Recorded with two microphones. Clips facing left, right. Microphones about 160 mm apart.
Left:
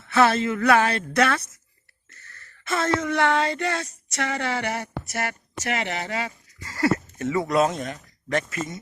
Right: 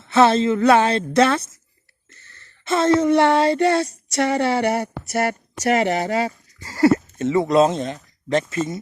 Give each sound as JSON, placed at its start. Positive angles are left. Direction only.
{"t": 0.0, "sound": "a woman's voice", "side_deg": -25}